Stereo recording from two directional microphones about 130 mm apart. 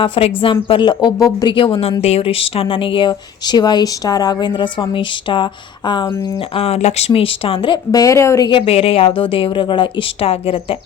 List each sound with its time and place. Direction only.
0.0 s speech: 45° left (ahead or behind)
2.0 s speech: 55° left (ahead or behind); by 8.4 s 25° left (ahead or behind)
8.4 s a woman's voice: 45° left (ahead or behind)